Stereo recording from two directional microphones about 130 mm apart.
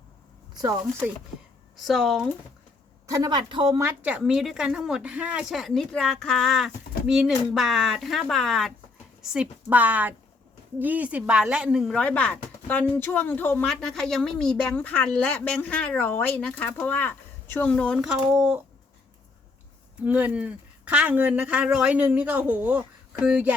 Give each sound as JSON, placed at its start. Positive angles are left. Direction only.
{"t": 1.7, "sound": "a woman's voice", "side_deg": 0}
{"t": 3.1, "sound": "a woman's voice", "side_deg": -30}
{"t": 3.8, "sound": "a woman's voice", "side_deg": -15}
{"t": 11.9, "sound": "a woman's voice", "side_deg": 10}
{"t": 13.7, "sound": "a woman's voice", "side_deg": 5}
{"t": 20.0, "sound": "speech", "side_deg": -10}